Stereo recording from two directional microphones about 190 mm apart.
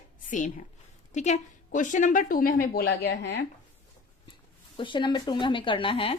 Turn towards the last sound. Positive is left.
turn(degrees=30)  # may be behind; listen again after turning